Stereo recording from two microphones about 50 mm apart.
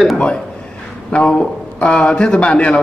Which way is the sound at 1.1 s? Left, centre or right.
Left.